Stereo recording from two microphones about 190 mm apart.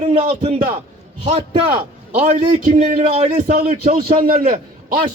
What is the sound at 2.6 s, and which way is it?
A man's voice, 40° right (ahead or behind).